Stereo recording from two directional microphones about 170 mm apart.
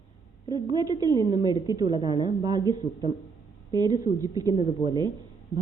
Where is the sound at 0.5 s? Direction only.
25° right (ahead or behind).